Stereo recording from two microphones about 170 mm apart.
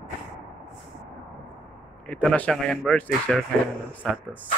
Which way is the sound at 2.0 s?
5° left (ahead or behind).